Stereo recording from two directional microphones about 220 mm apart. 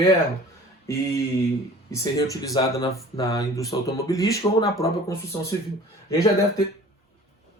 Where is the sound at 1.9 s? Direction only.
15° left (ahead or behind).